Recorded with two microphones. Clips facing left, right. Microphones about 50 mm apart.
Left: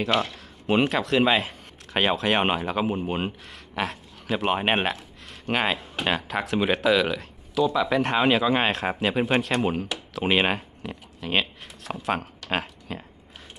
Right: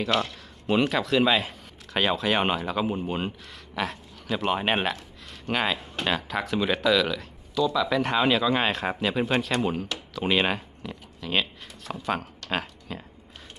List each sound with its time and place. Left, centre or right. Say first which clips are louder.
0.0 s a man's voice: left 1 dB; centre